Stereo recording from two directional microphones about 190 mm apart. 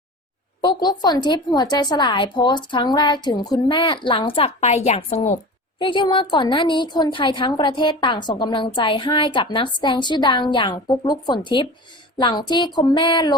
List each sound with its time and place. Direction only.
0.6 s a woman's voice: 25° left (ahead or behind)
5.8 s a woman's voice: 25° left (ahead or behind)